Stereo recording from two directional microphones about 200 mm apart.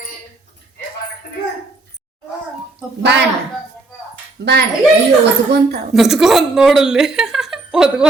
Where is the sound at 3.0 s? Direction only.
60° right (ahead or behind).